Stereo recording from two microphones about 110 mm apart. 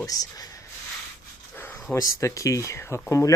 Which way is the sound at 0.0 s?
35° left (ahead or behind).